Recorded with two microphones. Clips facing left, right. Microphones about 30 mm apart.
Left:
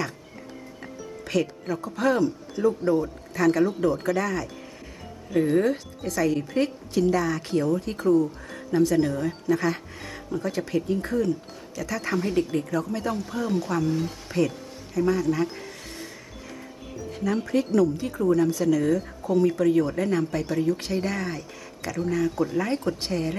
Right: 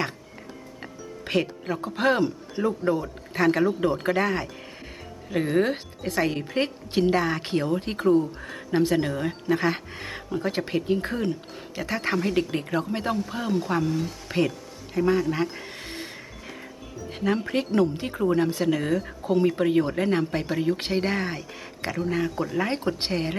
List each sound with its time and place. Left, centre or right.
1.2 s speech: right
13.8 s speech: centre
14.3 s speech: right
17.5 s speech: right